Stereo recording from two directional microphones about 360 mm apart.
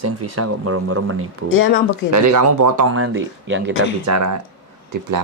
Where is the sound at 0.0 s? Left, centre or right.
Right.